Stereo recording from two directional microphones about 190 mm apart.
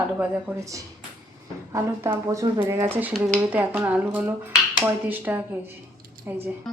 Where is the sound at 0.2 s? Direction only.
15° right (ahead or behind).